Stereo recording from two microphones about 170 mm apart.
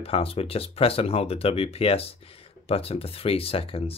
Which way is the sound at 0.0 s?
35° left (ahead or behind).